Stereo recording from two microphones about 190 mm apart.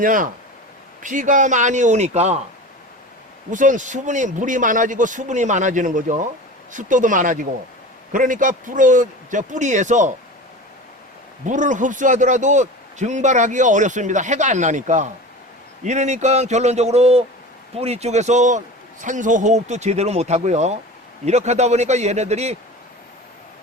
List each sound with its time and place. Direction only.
0.0 s a man's voice: 45° right (ahead or behind)
3.5 s a man's voice: 40° right (ahead or behind)
11.4 s a man's voice: 40° right (ahead or behind)